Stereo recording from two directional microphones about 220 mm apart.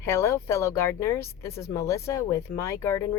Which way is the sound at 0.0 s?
10° left (ahead or behind).